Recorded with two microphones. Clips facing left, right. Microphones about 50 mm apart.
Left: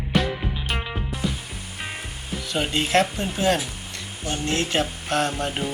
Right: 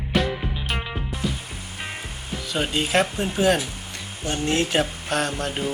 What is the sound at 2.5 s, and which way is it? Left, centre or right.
Speech, centre.